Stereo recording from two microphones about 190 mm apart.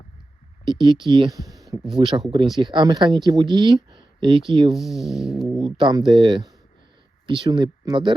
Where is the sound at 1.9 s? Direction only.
25° right (ahead or behind).